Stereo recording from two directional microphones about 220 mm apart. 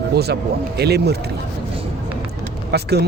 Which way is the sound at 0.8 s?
45° right (ahead or behind).